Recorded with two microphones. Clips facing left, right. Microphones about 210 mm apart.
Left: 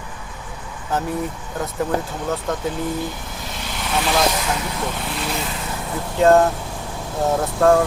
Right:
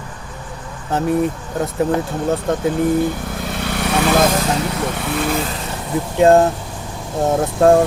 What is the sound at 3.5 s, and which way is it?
Vehicle, 60° right (ahead or behind).